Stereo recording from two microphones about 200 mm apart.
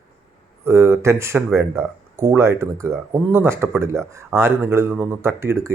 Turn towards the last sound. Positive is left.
turn(degrees=-10)  # may be behind; listen again after turning